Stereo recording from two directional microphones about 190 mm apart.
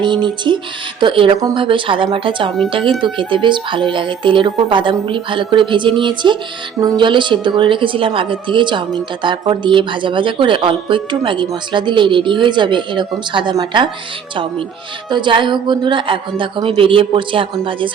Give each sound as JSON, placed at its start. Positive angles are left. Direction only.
{"t": 0.0, "sound": "speech", "side_deg": -25}
{"t": 15.1, "sound": "speech", "side_deg": -25}